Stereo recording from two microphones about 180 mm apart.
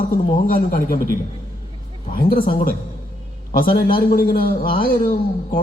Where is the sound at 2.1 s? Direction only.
50° left (ahead or behind).